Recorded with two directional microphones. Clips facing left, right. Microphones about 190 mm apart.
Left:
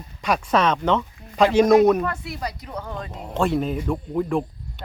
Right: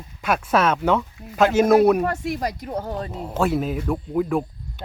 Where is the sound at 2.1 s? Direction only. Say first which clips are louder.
Right 5 dB; 45° right (ahead or behind).